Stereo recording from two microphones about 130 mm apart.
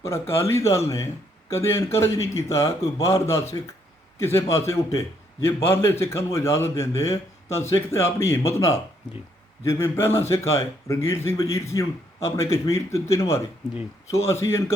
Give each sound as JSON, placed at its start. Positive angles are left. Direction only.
{"t": 0.1, "sound": "a man's voice", "side_deg": 20}
{"t": 3.6, "sound": "speech", "side_deg": 35}
{"t": 4.2, "sound": "a man's voice", "side_deg": 20}